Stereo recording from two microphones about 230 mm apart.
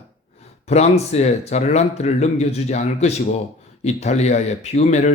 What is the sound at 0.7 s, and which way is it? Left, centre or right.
Speech, left.